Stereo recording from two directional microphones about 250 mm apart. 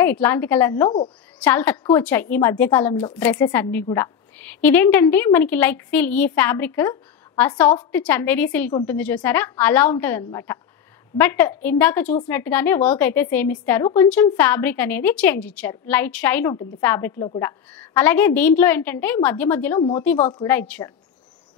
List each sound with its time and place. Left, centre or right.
0.0 s a woman's voice: centre
1.4 s a woman's voice: centre
20.2 s a woman's voice: left
20.4 s a woman's voice: centre